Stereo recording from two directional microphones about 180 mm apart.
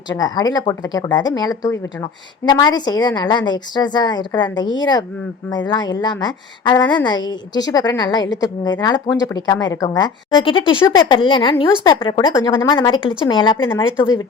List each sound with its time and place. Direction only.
0.1 s a woman's voice: 20° left (ahead or behind)